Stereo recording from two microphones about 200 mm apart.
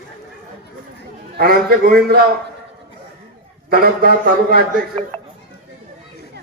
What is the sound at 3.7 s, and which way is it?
Speech, 45° right (ahead or behind).